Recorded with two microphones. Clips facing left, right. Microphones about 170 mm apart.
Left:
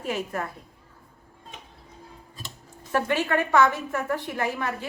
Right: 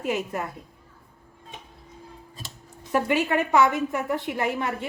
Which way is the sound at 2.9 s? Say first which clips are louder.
Right 1 dB; 15° right (ahead or behind).